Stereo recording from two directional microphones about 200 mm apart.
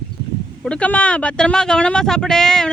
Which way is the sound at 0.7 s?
5° left (ahead or behind).